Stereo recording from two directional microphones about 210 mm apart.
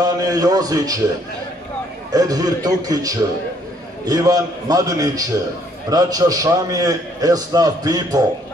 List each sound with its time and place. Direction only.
0.0 s a man's voice: 15° right (ahead or behind)
2.1 s a man's voice: 15° right (ahead or behind)